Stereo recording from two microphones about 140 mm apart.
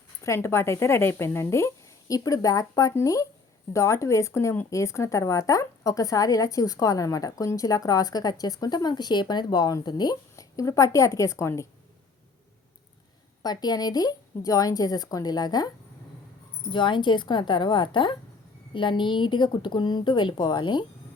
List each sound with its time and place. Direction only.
0.2 s speech: 20° left (ahead or behind)
13.4 s speech: 30° left (ahead or behind)
16.7 s a woman's voice: 35° left (ahead or behind)